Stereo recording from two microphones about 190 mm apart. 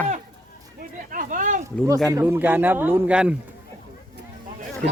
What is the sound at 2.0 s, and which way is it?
A man's voice, 15° right (ahead or behind).